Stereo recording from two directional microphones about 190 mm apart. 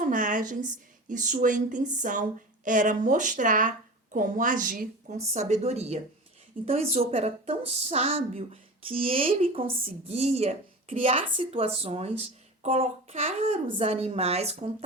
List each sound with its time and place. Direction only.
0.0 s a woman's voice: 45° right (ahead or behind)